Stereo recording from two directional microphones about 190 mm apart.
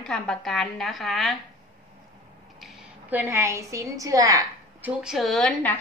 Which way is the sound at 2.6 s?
10° right (ahead or behind).